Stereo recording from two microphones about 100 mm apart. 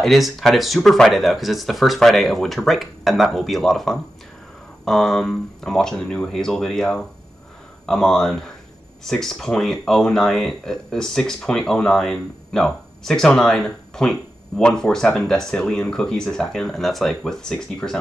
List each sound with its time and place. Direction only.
0.0 s speech: centre (ahead or behind)